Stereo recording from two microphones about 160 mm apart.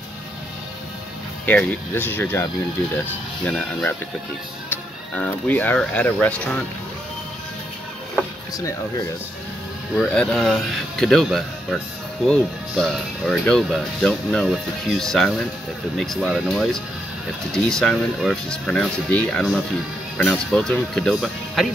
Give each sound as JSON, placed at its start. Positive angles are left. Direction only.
{"t": 1.4, "sound": "speech", "side_deg": 10}
{"t": 8.5, "sound": "speech", "side_deg": 20}
{"t": 9.9, "sound": "speech", "side_deg": 5}